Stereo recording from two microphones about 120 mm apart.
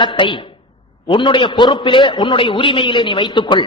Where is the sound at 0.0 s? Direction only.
40° left (ahead or behind).